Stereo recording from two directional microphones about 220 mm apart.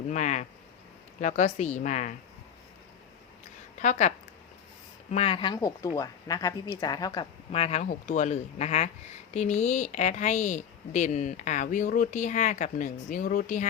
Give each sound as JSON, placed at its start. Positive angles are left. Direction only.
{"t": 0.1, "sound": "a woman's voice", "side_deg": 35}
{"t": 3.8, "sound": "a woman's voice", "side_deg": 35}
{"t": 5.1, "sound": "a woman's voice", "side_deg": 25}